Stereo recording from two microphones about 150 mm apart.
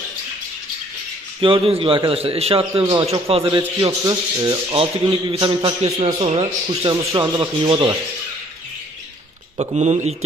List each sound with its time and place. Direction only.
1.4 s a man's voice: 35° right (ahead or behind)
4.7 s a man's voice: 40° right (ahead or behind)
9.6 s speech: 50° right (ahead or behind)